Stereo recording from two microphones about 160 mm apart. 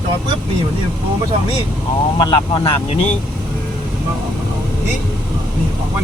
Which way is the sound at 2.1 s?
30° left (ahead or behind).